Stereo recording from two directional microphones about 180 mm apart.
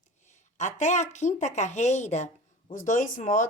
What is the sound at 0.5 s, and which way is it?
Speech, 40° left (ahead or behind).